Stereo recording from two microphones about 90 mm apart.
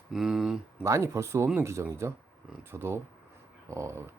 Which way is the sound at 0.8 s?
30° right (ahead or behind).